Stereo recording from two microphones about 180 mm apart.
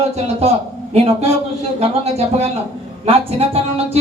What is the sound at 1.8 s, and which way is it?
A man's voice, 35° right (ahead or behind).